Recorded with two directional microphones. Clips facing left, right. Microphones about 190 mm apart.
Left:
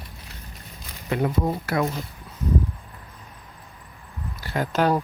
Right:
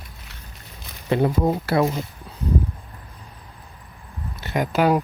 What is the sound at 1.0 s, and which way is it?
Speech, 30° right (ahead or behind).